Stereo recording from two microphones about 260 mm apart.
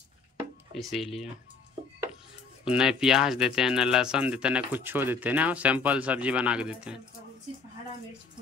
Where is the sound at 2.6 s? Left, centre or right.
Centre.